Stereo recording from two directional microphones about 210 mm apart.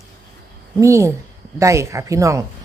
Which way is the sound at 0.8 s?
15° right (ahead or behind).